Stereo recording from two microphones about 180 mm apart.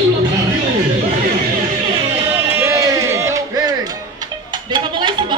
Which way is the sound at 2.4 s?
15° right (ahead or behind).